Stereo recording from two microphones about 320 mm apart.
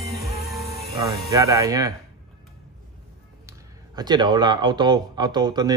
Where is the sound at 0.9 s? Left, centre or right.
Right.